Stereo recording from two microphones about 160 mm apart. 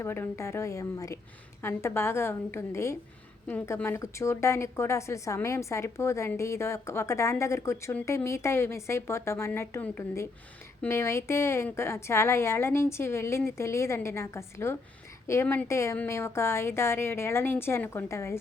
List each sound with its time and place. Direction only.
0.0 s a woman's voice: 15° left (ahead or behind)